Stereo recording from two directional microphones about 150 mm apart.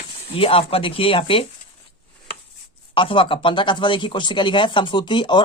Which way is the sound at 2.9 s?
35° left (ahead or behind).